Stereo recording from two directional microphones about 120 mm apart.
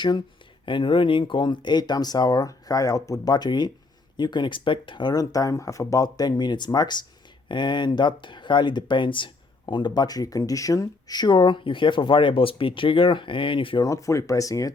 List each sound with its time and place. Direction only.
0.6 s speech: 45° left (ahead or behind)
13.8 s speech: 25° left (ahead or behind)